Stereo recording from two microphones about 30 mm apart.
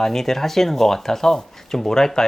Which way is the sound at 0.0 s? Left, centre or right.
Centre.